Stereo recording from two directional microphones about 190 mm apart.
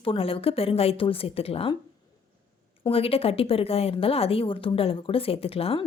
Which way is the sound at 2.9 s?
30° left (ahead or behind).